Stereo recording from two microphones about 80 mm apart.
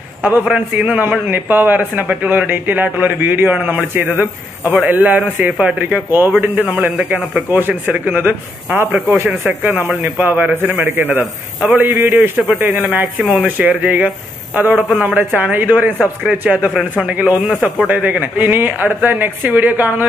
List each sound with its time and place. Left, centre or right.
0.2 s a man's voice: centre
6.0 s a man's voice: right
13.2 s speech: centre
13.6 s a man's voice: right
14.9 s a man's voice: centre
15.1 s a man's voice: right